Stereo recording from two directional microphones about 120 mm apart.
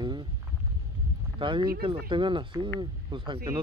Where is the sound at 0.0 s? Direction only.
40° right (ahead or behind).